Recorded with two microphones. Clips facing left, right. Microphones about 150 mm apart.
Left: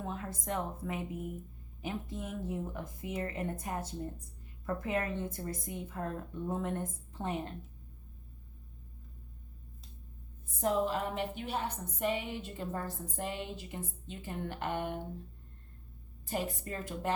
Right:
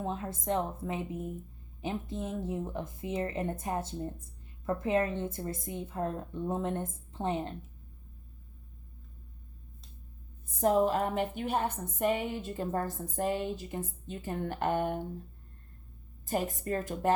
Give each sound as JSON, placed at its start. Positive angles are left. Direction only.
{"t": 0.0, "sound": "a woman's voice", "side_deg": -25}
{"t": 10.4, "sound": "a woman's voice", "side_deg": -45}
{"t": 16.2, "sound": "a woman's voice", "side_deg": -45}